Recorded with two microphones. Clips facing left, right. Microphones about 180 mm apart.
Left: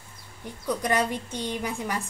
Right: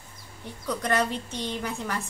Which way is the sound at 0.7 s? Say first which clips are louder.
Left 1 dB; 10° left (ahead or behind).